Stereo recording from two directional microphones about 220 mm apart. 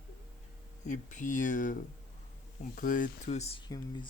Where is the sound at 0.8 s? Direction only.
35° left (ahead or behind).